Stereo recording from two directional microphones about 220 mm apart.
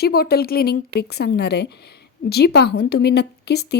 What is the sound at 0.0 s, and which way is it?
A woman's voice, 45° left (ahead or behind).